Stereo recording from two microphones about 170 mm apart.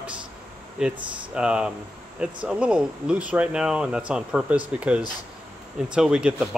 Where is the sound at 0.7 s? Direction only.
5° right (ahead or behind).